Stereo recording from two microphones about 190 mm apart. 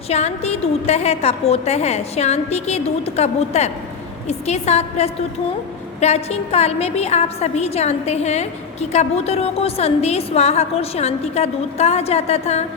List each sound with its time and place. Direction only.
0.1 s a woman's voice: 35° left (ahead or behind)